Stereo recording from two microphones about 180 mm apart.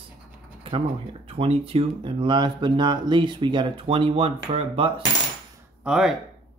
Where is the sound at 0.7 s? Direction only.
30° right (ahead or behind).